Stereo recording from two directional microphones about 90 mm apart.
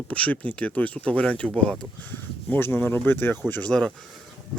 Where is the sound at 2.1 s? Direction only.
25° left (ahead or behind).